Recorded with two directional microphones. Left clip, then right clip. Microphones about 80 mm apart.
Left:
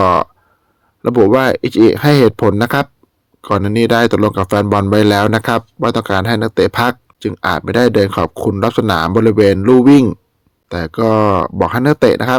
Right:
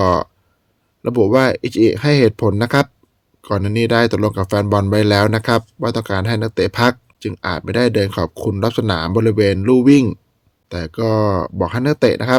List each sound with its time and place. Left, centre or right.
0.0 s speech: left